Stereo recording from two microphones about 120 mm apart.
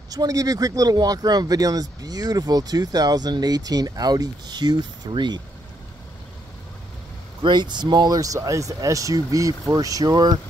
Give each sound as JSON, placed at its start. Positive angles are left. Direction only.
{"t": 0.1, "sound": "speech", "side_deg": -30}
{"t": 7.4, "sound": "speech", "side_deg": -40}